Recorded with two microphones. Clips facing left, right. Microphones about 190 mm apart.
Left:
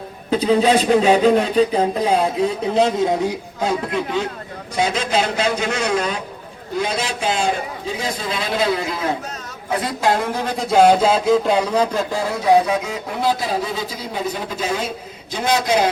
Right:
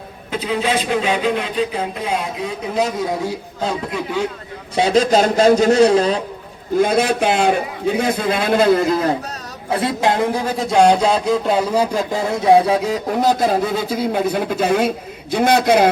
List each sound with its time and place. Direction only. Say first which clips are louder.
0.3 s speech: left 5 dB; 40° left (ahead or behind)
2.7 s speech: left 2 dB; 25° left (ahead or behind)
4.7 s a man's voice: right 6 dB; 30° right (ahead or behind)
6.7 s speech: right 7 dB; 55° right (ahead or behind)
9.7 s a man's voice: right 2 dB; 25° right (ahead or behind)
10.4 s speech: left 1 dB; centre (ahead or behind)
12.5 s speech: right 3 dB; 30° right (ahead or behind); by 15.9 s 60° right (ahead or behind)